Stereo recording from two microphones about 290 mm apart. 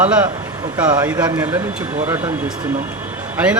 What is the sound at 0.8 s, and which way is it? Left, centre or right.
Speech, centre.